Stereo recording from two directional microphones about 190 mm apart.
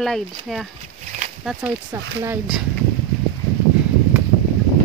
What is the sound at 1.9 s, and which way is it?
Speech, 20° right (ahead or behind).